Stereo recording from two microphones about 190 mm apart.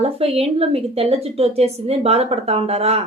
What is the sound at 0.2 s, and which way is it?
A woman's voice, 30° right (ahead or behind).